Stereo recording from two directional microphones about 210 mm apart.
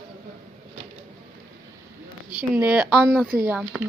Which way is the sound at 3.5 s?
5° right (ahead or behind).